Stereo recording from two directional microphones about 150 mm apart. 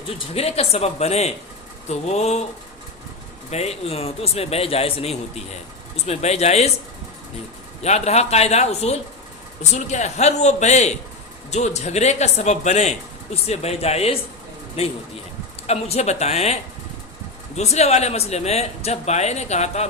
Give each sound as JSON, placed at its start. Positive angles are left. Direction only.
{"t": 0.3, "sound": "a man's voice", "side_deg": 40}
{"t": 3.5, "sound": "a man's voice", "side_deg": 45}
{"t": 7.8, "sound": "a man's voice", "side_deg": 45}
{"t": 17.6, "sound": "a man's voice", "side_deg": 45}